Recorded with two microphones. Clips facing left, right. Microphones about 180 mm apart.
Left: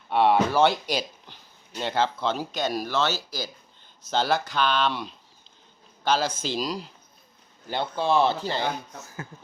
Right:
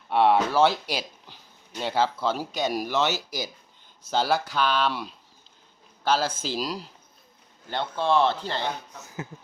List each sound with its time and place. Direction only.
0.1 s speech: centre (ahead or behind)
9.0 s speech: 20° right (ahead or behind)